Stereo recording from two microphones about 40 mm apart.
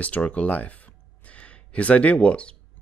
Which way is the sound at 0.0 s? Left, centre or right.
Left.